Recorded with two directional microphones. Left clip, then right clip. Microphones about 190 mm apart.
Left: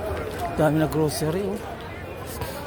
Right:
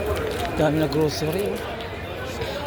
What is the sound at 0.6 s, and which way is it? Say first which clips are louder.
Speech: even; 35° left (ahead or behind).